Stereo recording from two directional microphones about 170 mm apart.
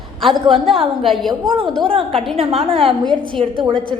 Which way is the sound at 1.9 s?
35° right (ahead or behind).